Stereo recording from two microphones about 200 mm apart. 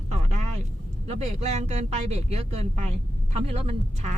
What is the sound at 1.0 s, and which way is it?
Speech, 35° right (ahead or behind).